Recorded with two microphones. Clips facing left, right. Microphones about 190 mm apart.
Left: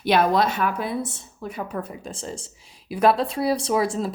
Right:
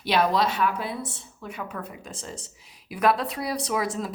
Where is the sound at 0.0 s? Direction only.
50° left (ahead or behind).